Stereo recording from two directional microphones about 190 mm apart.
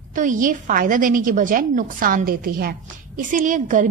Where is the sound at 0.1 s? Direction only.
45° right (ahead or behind).